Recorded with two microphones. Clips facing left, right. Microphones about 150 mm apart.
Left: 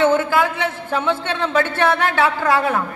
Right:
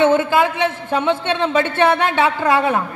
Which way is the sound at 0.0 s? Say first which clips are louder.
Right 2 dB; 20° right (ahead or behind).